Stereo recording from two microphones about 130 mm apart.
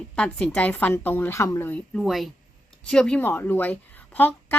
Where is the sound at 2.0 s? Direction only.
Centre (ahead or behind).